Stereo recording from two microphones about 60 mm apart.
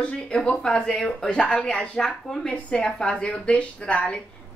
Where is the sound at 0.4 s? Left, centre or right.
Centre.